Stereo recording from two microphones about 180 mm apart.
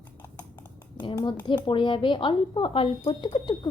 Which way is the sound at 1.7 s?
25° left (ahead or behind).